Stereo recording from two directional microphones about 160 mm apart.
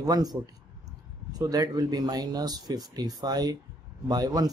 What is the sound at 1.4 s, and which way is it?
Speech, 25° right (ahead or behind).